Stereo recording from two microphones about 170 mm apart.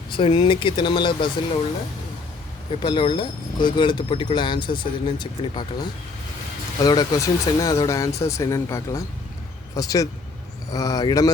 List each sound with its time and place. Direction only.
0.1 s speech: 30° left (ahead or behind)
2.8 s speech: 30° left (ahead or behind)